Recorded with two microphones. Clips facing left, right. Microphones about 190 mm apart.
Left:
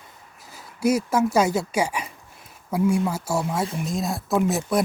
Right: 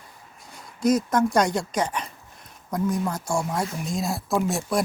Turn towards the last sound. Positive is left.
turn(degrees=0)  # may be behind; listen again after turning